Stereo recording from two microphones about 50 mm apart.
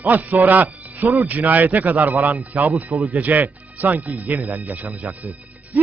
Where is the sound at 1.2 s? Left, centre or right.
Right.